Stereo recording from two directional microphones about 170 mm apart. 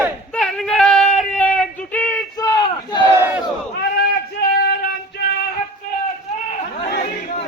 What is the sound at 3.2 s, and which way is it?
Battle cry, 10° right (ahead or behind).